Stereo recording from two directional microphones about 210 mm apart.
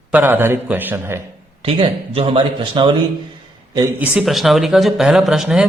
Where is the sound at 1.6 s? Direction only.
25° right (ahead or behind).